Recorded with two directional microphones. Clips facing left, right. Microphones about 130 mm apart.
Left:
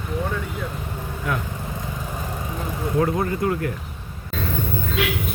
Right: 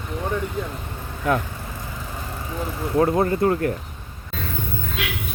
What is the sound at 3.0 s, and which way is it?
Speech, 35° right (ahead or behind).